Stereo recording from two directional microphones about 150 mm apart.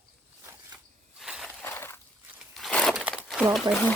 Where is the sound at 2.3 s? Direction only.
Centre (ahead or behind).